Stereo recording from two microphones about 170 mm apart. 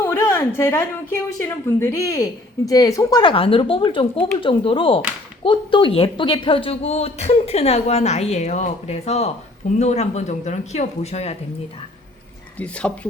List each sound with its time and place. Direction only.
0.0 s a woman's voice: 15° left (ahead or behind); by 11.3 s 40° left (ahead or behind)
12.5 s speech: 5° left (ahead or behind)